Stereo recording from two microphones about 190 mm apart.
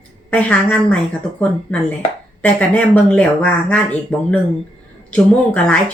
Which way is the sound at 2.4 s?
10° left (ahead or behind).